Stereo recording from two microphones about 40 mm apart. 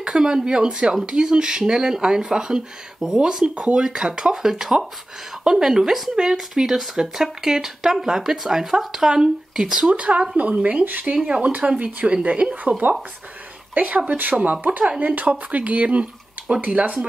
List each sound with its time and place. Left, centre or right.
0.0 s speech: centre
9.8 s speech: right
11.2 s speech: right